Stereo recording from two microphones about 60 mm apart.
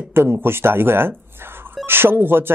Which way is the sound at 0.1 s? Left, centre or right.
Right.